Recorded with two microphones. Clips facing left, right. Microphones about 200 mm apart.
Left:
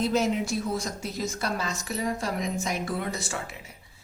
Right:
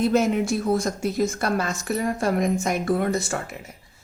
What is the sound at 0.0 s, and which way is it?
A woman's voice, 55° right (ahead or behind).